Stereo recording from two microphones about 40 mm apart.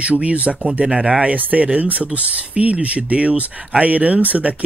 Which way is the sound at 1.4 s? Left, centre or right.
Right.